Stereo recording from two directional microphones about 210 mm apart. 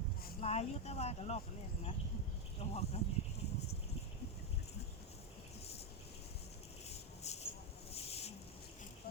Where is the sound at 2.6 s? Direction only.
30° left (ahead or behind).